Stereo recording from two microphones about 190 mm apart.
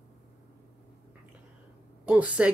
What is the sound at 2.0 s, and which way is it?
Speech, 5° right (ahead or behind).